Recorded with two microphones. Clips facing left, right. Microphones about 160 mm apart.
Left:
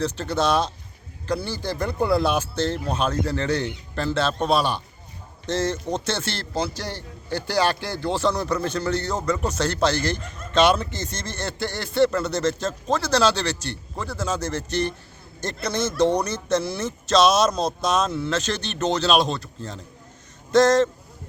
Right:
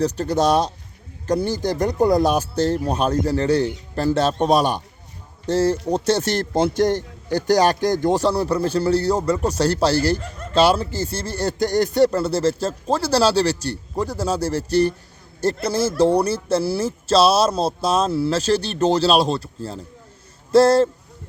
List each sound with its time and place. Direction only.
0.0 s speech: 40° right (ahead or behind)
15.8 s speech: 5° right (ahead or behind)
16.2 s speech: 30° right (ahead or behind)